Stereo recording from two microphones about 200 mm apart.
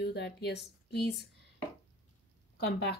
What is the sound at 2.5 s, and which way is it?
Speech, 55° left (ahead or behind).